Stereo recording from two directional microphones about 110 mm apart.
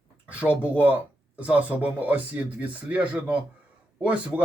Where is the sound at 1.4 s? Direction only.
15° right (ahead or behind).